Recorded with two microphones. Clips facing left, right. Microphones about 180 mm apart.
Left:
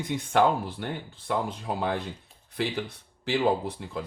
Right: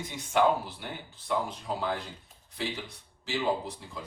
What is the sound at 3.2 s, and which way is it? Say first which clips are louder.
Speech: left 5 dB; 60° left (ahead or behind).